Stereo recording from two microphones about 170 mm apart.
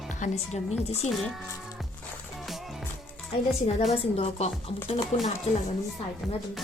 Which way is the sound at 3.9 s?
40° left (ahead or behind).